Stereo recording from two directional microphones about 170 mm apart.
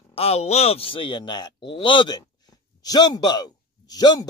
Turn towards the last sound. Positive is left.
turn(degrees=20)  # may be behind; listen again after turning